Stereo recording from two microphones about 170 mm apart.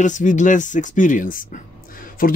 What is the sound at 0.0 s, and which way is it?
Speech, 45° left (ahead or behind).